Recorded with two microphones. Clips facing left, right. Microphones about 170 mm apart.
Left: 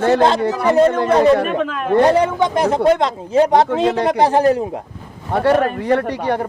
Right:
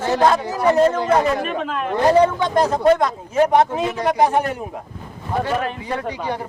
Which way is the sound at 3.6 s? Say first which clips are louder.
Left 6 dB; 80° left.